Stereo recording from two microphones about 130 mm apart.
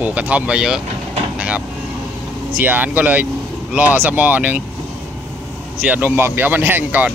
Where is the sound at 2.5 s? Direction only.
15° right (ahead or behind).